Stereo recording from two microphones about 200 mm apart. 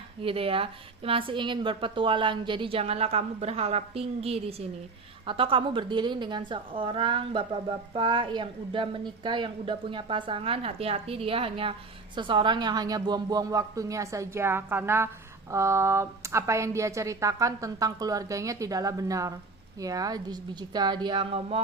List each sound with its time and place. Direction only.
0.2 s a woman's voice: 30° right (ahead or behind)